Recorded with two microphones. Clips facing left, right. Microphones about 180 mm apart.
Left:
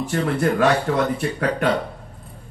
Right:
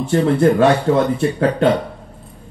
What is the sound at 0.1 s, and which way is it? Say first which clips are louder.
A man's voice: right 8 dB; 25° right (ahead or behind).